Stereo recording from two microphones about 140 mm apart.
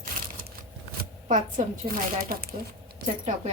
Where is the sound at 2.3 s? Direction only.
90° right.